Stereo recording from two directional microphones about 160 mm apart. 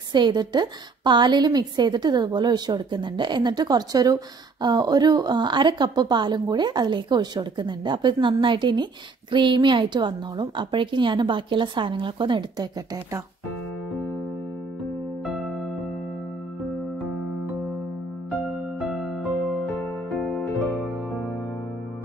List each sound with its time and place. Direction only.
0.1 s a woman's voice: 30° right (ahead or behind)
15.3 s music: 5° right (ahead or behind)
19.2 s music: 5° right (ahead or behind)